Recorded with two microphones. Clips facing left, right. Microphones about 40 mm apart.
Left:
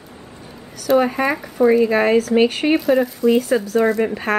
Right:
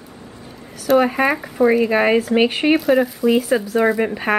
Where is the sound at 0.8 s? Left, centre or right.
Centre.